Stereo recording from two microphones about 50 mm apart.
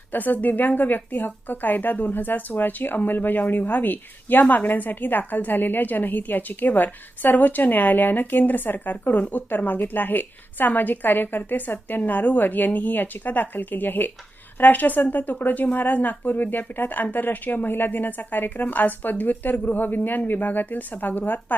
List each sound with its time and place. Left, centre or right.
0.1 s a woman's voice: left